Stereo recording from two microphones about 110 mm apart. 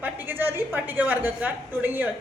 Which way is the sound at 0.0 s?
20° right (ahead or behind).